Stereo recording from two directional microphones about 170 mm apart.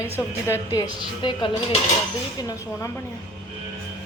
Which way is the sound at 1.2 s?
30° left (ahead or behind).